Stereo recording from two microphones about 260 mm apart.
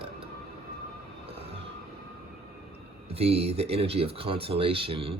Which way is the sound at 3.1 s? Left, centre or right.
Right.